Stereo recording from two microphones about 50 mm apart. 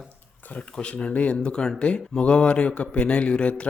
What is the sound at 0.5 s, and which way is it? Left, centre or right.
Speech, left.